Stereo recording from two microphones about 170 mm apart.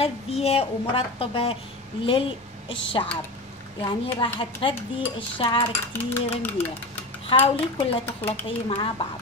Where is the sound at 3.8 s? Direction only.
30° left (ahead or behind).